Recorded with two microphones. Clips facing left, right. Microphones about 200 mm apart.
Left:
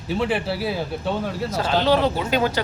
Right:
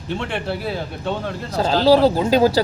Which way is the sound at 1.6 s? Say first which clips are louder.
Right 6 dB; 35° right (ahead or behind).